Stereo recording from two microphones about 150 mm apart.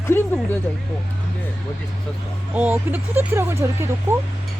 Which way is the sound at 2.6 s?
10° right (ahead or behind).